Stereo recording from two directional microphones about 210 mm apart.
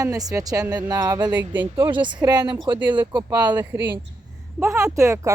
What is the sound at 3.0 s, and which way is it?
Speech, 20° right (ahead or behind).